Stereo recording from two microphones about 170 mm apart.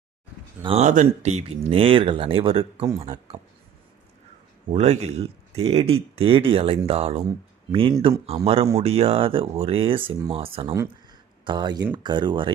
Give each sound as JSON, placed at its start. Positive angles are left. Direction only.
{"t": 0.6, "sound": "speech", "side_deg": -40}
{"t": 2.8, "sound": "speech", "side_deg": -20}
{"t": 4.7, "sound": "speech", "side_deg": -40}